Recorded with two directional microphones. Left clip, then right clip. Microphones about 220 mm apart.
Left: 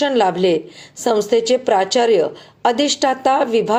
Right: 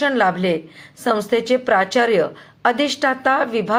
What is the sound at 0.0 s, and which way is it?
A woman's voice, 20° left (ahead or behind).